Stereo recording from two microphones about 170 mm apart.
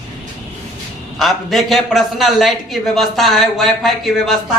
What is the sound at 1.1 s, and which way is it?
A man's voice, centre (ahead or behind).